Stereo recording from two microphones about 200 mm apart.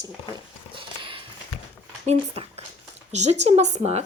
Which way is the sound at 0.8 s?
25° right (ahead or behind).